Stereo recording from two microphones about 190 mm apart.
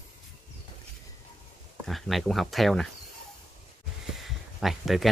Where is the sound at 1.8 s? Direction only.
Centre (ahead or behind).